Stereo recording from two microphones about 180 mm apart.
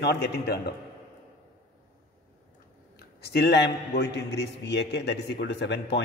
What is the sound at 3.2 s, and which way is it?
A man's voice, 65° left (ahead or behind).